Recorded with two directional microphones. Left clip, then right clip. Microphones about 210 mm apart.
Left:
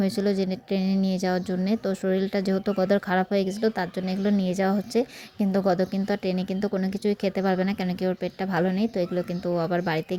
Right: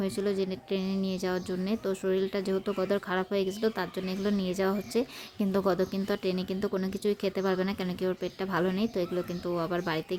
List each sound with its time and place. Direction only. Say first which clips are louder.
0.0 s a woman's voice: left 4 dB; 20° left (ahead or behind)